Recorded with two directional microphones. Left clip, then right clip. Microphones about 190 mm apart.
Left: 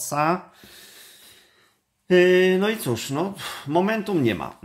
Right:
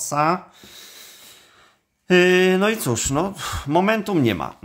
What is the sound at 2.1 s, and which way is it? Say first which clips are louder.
Speech: right 1 dB; 30° right (ahead or behind).